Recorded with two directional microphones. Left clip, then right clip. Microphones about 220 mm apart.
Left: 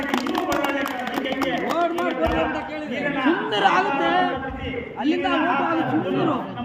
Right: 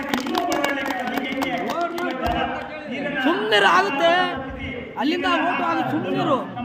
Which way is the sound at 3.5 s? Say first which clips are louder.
Right 4 dB; 50° right (ahead or behind).